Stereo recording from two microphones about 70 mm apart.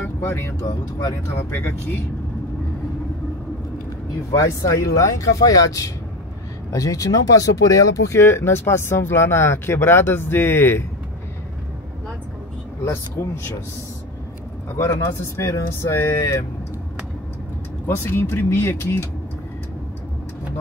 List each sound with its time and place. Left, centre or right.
0.0 s speech: left
1.5 s speech: left
4.3 s speech: left
8.1 s speech: left
13.2 s speech: left
14.8 s speech: left
17.8 s speech: left